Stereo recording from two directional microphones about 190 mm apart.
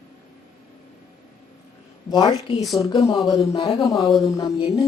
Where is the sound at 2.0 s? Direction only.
20° left (ahead or behind).